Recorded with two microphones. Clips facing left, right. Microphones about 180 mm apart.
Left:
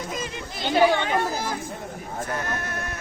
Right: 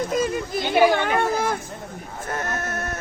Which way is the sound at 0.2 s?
45° right (ahead or behind).